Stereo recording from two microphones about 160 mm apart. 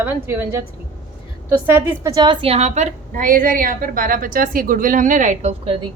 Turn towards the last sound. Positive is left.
turn(degrees=-35)  # may be behind; listen again after turning